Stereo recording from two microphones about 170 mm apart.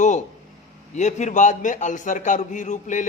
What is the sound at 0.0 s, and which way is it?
A man's voice, 45° left (ahead or behind).